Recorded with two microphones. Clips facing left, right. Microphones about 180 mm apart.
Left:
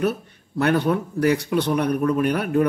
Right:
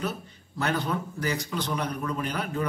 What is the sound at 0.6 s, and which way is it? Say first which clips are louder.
Speech: left 8 dB; 60° left (ahead or behind).